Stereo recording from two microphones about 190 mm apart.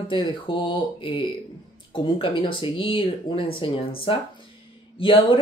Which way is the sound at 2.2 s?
25° left (ahead or behind).